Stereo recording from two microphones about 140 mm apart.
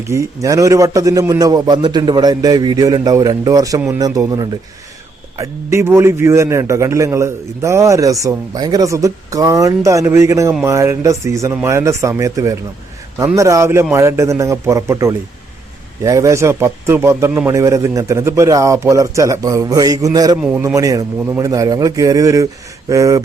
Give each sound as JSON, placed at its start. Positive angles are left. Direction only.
{"t": 0.1, "sound": "a man's voice", "side_deg": -20}